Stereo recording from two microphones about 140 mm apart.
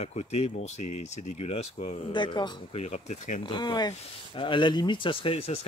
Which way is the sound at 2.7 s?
55° left (ahead or behind).